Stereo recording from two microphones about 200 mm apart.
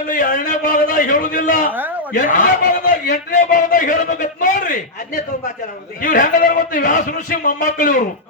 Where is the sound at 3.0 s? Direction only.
55° left (ahead or behind).